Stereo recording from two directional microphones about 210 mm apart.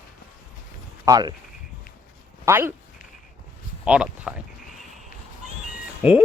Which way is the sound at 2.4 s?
10° right (ahead or behind).